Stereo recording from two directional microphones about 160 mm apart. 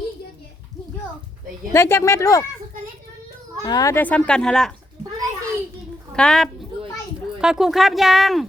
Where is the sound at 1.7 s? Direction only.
15° left (ahead or behind).